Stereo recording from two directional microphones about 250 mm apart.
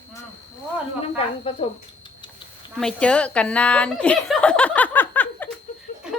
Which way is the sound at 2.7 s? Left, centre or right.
Centre.